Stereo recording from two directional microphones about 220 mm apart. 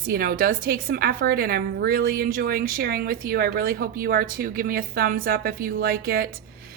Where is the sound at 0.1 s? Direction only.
45° right (ahead or behind).